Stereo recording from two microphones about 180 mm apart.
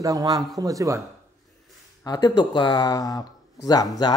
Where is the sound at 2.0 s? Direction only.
25° left (ahead or behind).